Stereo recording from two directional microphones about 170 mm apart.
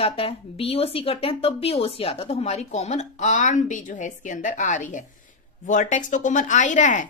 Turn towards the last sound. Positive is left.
turn(degrees=45)  # may be behind; listen again after turning